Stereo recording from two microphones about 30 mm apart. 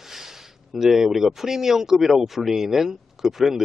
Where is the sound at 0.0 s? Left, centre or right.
Centre.